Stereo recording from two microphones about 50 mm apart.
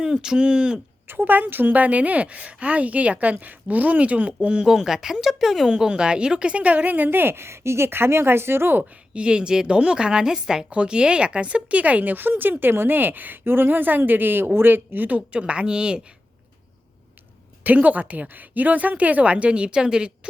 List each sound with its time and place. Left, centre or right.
0.0 s a woman's voice: centre
1.0 s a woman's voice: right
4.6 s a woman's voice: centre
5.6 s a woman's voice: centre; by 8.8 s right
8.8 s a woman's voice: centre
15.4 s a woman's voice: centre
17.6 s a woman's voice: right; by 20.1 s centre